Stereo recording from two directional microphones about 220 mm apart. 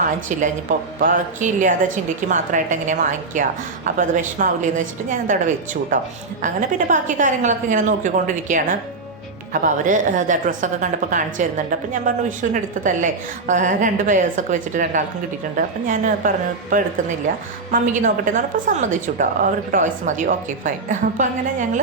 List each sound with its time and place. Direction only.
0.9 s a woman's voice: 40° right (ahead or behind)
5.9 s a woman's voice: 35° right (ahead or behind)